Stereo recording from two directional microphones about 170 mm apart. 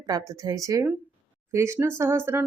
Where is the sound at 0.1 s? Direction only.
20° right (ahead or behind).